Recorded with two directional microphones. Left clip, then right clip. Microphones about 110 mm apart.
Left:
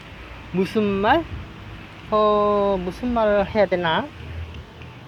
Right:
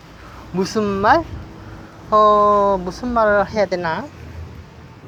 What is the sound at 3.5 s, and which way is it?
Speech, 65° left (ahead or behind).